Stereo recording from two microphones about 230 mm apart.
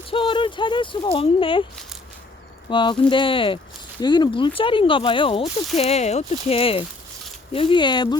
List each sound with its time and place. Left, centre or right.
0.1 s speech: left
2.6 s speech: left